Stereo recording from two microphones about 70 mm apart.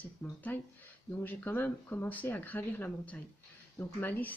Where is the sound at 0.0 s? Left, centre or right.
Left.